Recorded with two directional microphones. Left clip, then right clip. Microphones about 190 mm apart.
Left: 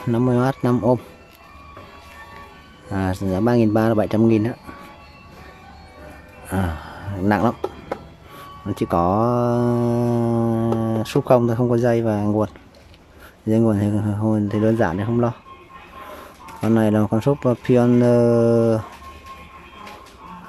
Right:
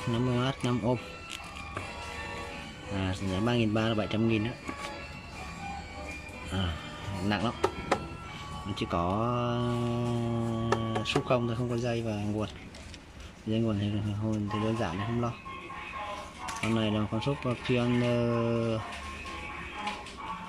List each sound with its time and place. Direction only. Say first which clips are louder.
0.1 s speech: left 12 dB; 25° left (ahead or behind)
3.0 s speech: left 11 dB; 25° left (ahead or behind)
6.5 s speech: left 10 dB; 25° left (ahead or behind)
8.7 s speech: left 12 dB; 25° left (ahead or behind)
13.5 s speech: left 13 dB; 30° left (ahead or behind)
14.5 s speech: left 12 dB; 40° left (ahead or behind)
16.6 s speech: left 13 dB; 30° left (ahead or behind)